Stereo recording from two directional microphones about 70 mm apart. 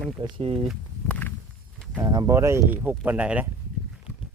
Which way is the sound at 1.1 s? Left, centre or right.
Left.